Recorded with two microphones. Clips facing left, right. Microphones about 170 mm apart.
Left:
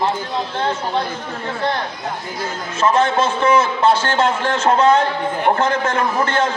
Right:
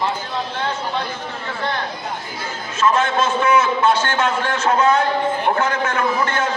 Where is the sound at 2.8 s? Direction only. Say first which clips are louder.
Left 2 dB; 30° left (ahead or behind).